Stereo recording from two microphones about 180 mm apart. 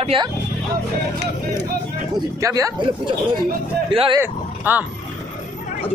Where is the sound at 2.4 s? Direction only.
20° right (ahead or behind).